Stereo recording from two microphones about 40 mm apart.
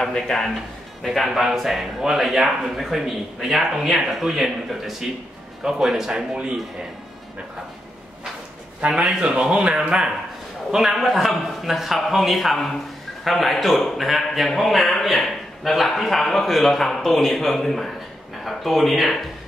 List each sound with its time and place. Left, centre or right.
0.0 s a man's voice: centre
1.0 s a man's voice: centre
5.6 s speech: centre
9.2 s a man's voice: right; by 19.3 s centre